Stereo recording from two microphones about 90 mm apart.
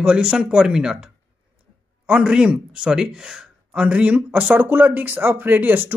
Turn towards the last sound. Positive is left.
turn(degrees=-20)  # may be behind; listen again after turning